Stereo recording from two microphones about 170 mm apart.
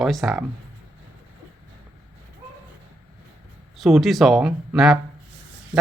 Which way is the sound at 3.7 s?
Centre (ahead or behind).